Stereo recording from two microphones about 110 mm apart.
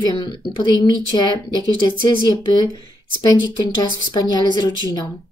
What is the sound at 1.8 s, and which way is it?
Speech, 40° left (ahead or behind).